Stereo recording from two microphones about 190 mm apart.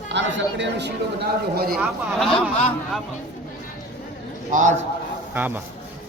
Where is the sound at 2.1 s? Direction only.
Centre (ahead or behind).